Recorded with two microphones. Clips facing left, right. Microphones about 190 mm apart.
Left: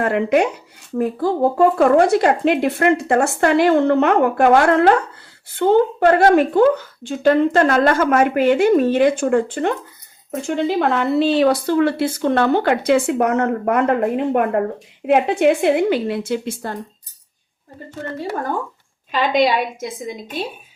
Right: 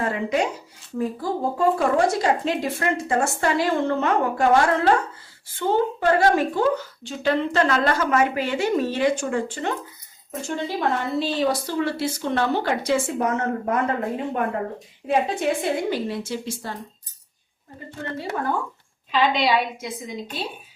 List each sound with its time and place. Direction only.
0.0 s speech: 65° left (ahead or behind)
10.4 s a woman's voice: 65° left (ahead or behind)
19.1 s a woman's voice: 45° left (ahead or behind)